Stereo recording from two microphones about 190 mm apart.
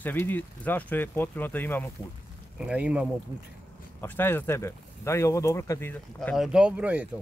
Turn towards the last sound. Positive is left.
turn(degrees=-10)  # may be behind; listen again after turning